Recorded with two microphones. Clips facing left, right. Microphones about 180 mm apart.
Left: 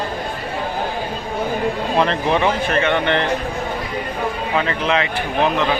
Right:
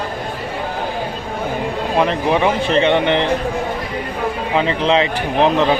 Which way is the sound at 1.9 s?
10° right (ahead or behind).